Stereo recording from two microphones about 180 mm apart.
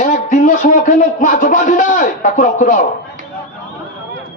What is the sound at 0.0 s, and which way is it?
Speech, 45° left (ahead or behind).